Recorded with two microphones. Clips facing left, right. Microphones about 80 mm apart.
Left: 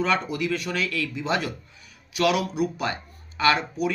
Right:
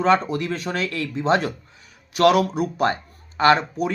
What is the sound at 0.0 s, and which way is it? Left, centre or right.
Speech, right.